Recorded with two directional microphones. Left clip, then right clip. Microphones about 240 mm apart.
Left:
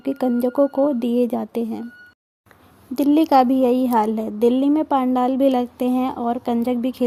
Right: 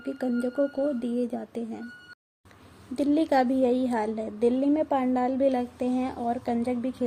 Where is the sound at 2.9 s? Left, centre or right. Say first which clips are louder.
Left 8 dB; left.